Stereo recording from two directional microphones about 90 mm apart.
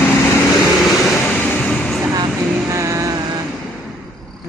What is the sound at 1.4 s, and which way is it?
Music, 15° left (ahead or behind).